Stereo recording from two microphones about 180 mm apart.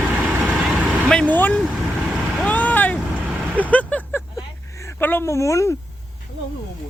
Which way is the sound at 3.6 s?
10° left (ahead or behind).